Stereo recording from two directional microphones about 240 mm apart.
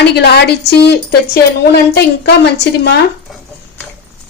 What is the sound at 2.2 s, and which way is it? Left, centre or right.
Speech, left.